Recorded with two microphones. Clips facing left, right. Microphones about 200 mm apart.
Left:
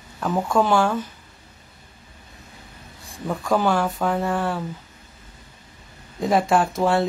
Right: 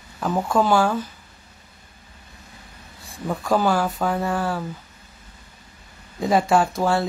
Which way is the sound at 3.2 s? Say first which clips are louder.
Even; 5° right (ahead or behind).